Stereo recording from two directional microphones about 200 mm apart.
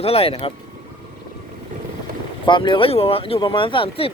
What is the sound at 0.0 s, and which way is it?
Speech, 30° left (ahead or behind).